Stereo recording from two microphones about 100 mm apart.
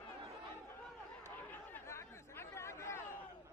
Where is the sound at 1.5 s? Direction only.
25° left (ahead or behind).